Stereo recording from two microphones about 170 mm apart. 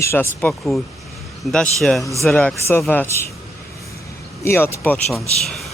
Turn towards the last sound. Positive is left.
turn(degrees=0)  # may be behind; listen again after turning